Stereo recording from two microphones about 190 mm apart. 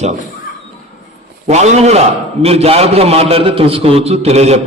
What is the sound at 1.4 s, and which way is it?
A man's voice, 35° right (ahead or behind).